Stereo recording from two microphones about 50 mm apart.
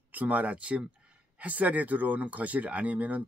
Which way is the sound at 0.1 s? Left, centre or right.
Right.